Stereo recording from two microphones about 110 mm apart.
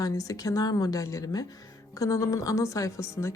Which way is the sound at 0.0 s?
30° left (ahead or behind).